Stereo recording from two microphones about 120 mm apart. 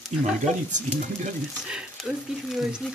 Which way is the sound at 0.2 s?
90° right.